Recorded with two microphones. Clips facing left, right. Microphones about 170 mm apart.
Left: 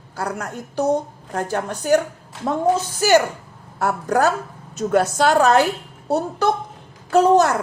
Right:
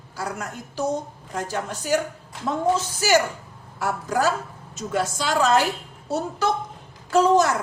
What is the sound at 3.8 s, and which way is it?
A woman's voice, 60° left (ahead or behind).